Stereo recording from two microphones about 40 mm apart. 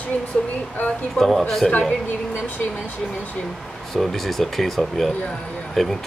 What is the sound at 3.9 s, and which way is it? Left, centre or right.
Speech, centre.